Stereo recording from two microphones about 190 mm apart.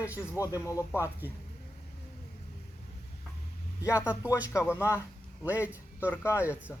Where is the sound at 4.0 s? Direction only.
10° right (ahead or behind).